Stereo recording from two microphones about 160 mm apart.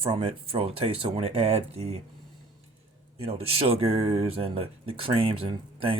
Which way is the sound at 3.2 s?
35° right (ahead or behind).